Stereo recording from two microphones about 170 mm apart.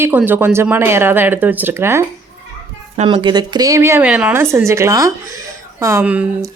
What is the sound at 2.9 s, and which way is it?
Speech, 35° right (ahead or behind).